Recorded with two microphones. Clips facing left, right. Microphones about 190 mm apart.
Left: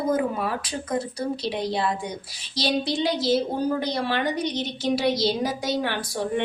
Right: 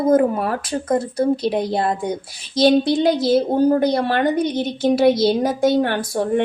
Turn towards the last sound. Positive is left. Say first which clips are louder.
# right 8 dB
turn(degrees=-50)  # may be behind; listen again after turning